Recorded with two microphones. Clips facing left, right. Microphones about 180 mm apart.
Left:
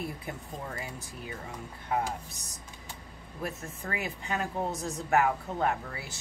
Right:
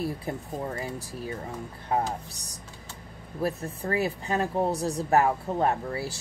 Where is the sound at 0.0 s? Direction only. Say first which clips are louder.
Right 6 dB; 35° right (ahead or behind).